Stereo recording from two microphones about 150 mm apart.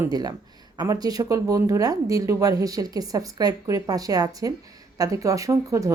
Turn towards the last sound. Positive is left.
turn(degrees=-20)  # may be behind; listen again after turning